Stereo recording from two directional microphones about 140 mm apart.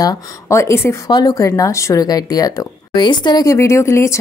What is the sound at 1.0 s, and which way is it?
A woman's voice, 30° left (ahead or behind).